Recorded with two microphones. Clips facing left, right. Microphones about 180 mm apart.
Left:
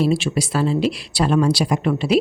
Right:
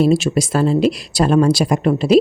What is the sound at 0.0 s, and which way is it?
Speech, 45° right (ahead or behind).